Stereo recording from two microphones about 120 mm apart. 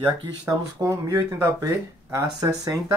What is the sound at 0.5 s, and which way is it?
Speech, 30° right (ahead or behind).